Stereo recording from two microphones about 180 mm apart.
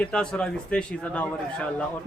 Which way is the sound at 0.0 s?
5° left (ahead or behind).